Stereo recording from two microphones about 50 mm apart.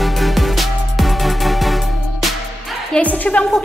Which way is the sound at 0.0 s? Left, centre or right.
Centre.